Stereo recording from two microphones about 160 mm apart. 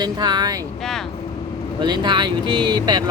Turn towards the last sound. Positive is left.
turn(degrees=-25)  # may be behind; listen again after turning